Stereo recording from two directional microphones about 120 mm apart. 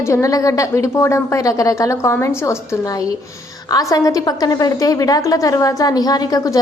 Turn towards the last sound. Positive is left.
turn(degrees=30)  # may be behind; listen again after turning